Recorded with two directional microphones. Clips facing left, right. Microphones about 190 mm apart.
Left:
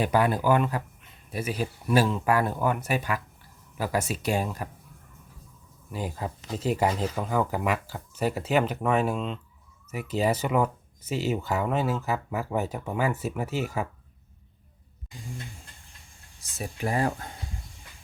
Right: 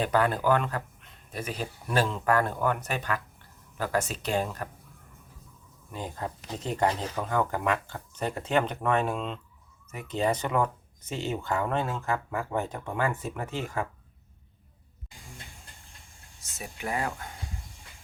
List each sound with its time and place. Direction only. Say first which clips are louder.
0.0 s speech: left 2 dB; 10° left (ahead or behind)
5.9 s speech: left 2 dB; 10° left (ahead or behind)
16.6 s speech: left 5 dB; 35° left (ahead or behind)